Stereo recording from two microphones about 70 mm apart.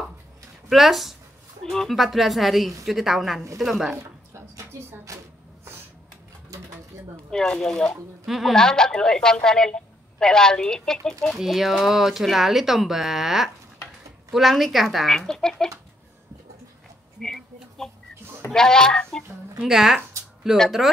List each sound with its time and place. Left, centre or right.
0.7 s speech: centre
4.3 s a sound: right
7.2 s a woman's voice: centre
8.3 s speech: centre
8.5 s a woman's voice: centre
11.3 s speech: centre
17.2 s speech: centre
18.5 s a woman's voice: centre
19.6 s speech: centre